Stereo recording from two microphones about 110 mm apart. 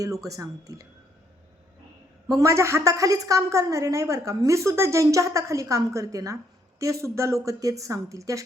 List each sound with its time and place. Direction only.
0.3 s a woman's voice: 30° right (ahead or behind)
2.2 s a woman's voice: 30° right (ahead or behind)